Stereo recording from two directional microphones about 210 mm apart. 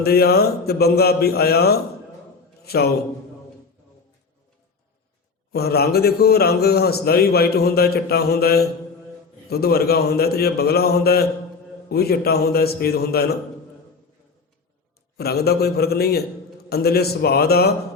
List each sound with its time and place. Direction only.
0.0 s a man's voice: 50° left (ahead or behind)
5.5 s a man's voice: 50° left (ahead or behind)
15.2 s a man's voice: 50° left (ahead or behind)